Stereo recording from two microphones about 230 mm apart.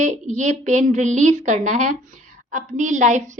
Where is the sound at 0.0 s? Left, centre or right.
Right.